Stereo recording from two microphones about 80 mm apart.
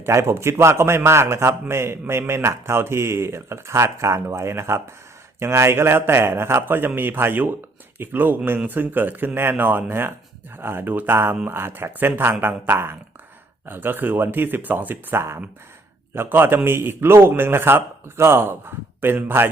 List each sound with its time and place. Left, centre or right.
0.0 s a man's voice: right